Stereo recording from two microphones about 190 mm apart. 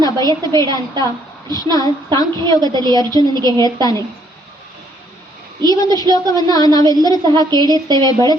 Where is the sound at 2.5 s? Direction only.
20° right (ahead or behind).